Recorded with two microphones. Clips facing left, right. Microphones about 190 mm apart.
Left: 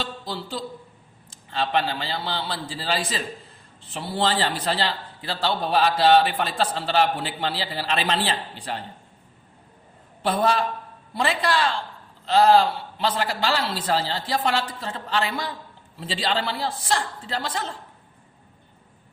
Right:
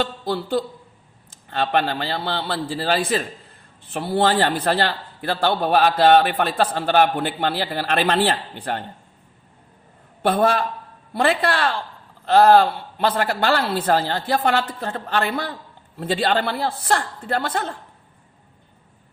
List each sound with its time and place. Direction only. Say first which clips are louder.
0.0 s a man's voice: right 8 dB; 55° right (ahead or behind)
10.2 s a man's voice: right 3 dB; 55° right (ahead or behind)